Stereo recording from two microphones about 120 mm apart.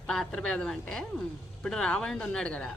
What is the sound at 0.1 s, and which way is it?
A woman's voice, 5° left (ahead or behind).